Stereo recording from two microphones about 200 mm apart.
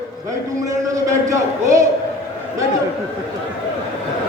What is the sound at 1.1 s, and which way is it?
Speech, 15° right (ahead or behind).